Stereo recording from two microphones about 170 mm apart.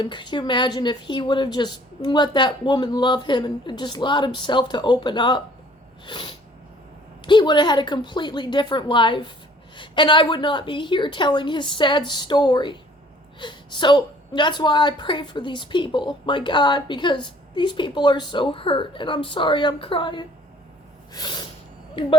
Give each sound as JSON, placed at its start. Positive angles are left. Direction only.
{"t": 0.0, "sound": "a woman's voice", "side_deg": 25}
{"t": 21.1, "sound": "snort", "side_deg": 25}